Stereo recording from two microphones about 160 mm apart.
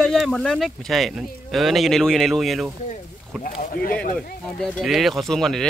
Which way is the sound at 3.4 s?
60° left (ahead or behind).